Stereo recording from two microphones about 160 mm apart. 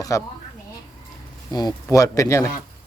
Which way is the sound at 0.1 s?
20° left (ahead or behind).